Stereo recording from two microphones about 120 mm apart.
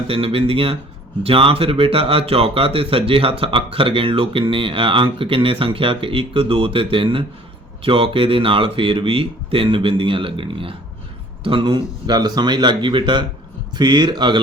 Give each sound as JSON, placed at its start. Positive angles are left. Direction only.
{"t": 0.1, "sound": "speech", "side_deg": -50}